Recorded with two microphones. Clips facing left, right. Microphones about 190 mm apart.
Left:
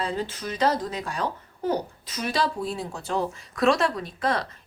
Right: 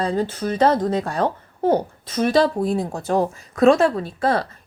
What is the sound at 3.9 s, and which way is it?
Speech, 30° right (ahead or behind).